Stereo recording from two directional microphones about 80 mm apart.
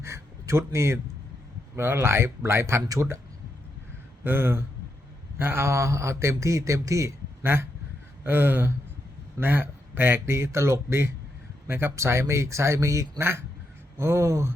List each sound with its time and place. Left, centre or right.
0.0 s a sound: right
1.7 s a man's voice: right
2.8 s speech: right
4.2 s a man's voice: right